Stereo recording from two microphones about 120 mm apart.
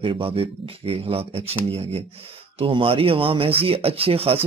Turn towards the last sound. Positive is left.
turn(degrees=-55)  # may be behind; listen again after turning